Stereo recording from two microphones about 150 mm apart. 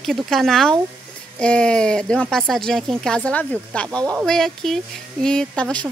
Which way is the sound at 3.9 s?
25° right (ahead or behind).